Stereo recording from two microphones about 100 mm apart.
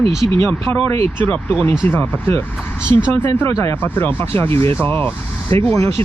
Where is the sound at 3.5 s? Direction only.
30° left (ahead or behind).